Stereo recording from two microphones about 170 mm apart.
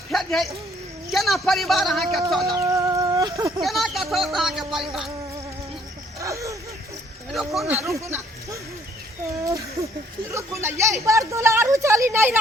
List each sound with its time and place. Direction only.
0.1 s a sound: centre (ahead or behind)
1.1 s speech: centre (ahead or behind)
2.6 s chicken: 20° right (ahead or behind)
3.6 s speech: centre (ahead or behind)
6.1 s a sound: 20° right (ahead or behind)
7.3 s speech: centre (ahead or behind)
7.9 s speech: 15° right (ahead or behind)